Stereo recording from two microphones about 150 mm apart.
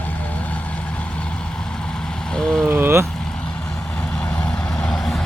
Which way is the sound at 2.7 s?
15° right (ahead or behind).